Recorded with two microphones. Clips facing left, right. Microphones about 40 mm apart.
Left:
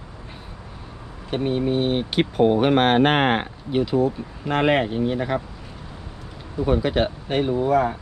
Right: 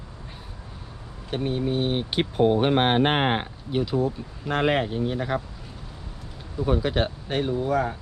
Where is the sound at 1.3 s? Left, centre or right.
Centre.